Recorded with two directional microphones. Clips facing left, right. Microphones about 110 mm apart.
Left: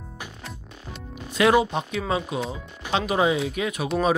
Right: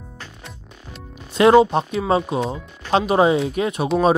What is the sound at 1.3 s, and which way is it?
Speech, 30° right (ahead or behind).